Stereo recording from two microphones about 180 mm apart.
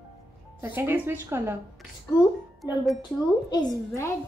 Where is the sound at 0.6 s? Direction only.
15° right (ahead or behind).